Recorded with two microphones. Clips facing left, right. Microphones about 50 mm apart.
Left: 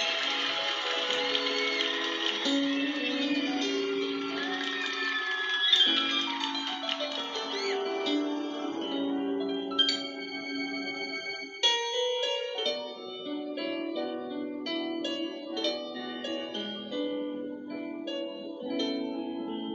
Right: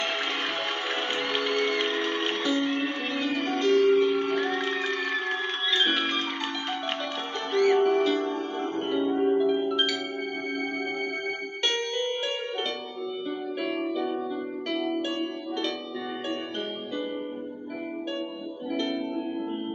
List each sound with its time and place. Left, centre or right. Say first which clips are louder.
1.1 s music: right 5 dB; centre
7.5 s music: right 11 dB; centre
11.6 s music: even; centre
13.6 s harp: right 6 dB; centre
18.7 s music: right 3 dB; centre